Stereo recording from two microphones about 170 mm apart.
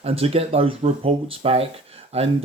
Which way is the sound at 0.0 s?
35° right (ahead or behind).